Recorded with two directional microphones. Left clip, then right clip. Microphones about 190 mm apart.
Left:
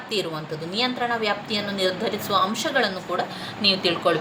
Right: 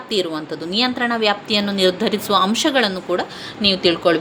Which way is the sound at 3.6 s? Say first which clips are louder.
Right 4 dB; 30° right (ahead or behind).